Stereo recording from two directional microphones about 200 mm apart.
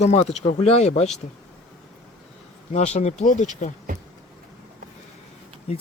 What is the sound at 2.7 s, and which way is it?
Speech, 35° left (ahead or behind).